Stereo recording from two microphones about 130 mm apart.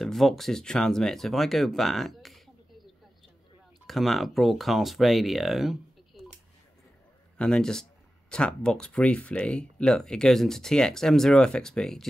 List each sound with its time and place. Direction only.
0.0 s speech: centre (ahead or behind)
3.8 s speech: centre (ahead or behind)
7.3 s speech: 5° left (ahead or behind)